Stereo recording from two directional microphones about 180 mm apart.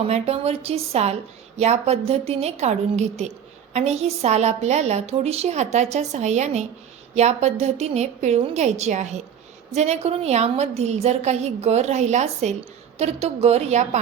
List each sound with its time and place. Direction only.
0.0 s a woman's voice: 35° right (ahead or behind)